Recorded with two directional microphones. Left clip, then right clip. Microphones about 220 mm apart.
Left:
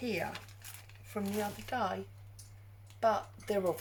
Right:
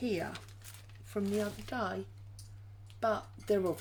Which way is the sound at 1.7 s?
45° right (ahead or behind).